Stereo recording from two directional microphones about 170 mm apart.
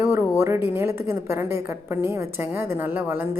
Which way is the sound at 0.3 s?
15° right (ahead or behind).